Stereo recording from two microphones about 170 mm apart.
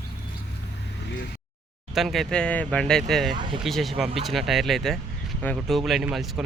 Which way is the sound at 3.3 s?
25° right (ahead or behind).